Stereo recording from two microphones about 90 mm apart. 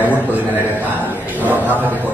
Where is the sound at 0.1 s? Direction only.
20° right (ahead or behind).